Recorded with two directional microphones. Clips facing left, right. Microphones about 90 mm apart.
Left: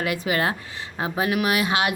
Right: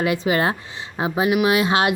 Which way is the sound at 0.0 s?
25° right (ahead or behind).